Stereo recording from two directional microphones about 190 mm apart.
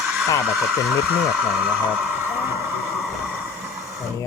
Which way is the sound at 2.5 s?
15° right (ahead or behind).